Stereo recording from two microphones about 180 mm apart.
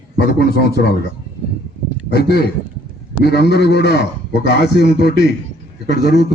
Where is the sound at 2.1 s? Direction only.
60° left (ahead or behind).